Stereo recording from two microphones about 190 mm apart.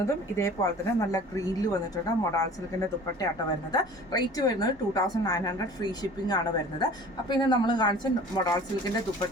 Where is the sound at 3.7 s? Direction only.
20° left (ahead or behind).